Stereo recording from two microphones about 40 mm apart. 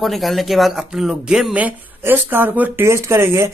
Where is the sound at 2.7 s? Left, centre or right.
Right.